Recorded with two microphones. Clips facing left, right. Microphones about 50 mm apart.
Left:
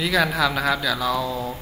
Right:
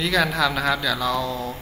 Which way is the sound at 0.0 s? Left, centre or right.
Centre.